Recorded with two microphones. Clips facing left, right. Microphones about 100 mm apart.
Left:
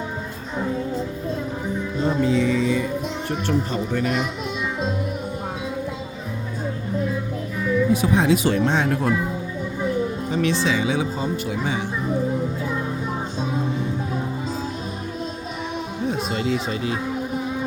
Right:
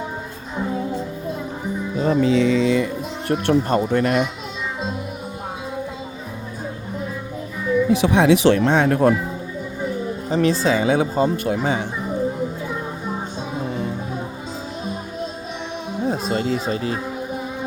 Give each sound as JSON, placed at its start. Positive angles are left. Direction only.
{"t": 2.0, "sound": "music", "side_deg": -90}
{"t": 3.4, "sound": "speech", "side_deg": -55}
{"t": 7.9, "sound": "speech", "side_deg": -80}
{"t": 10.2, "sound": "speech", "side_deg": -35}
{"t": 16.0, "sound": "speech", "side_deg": -35}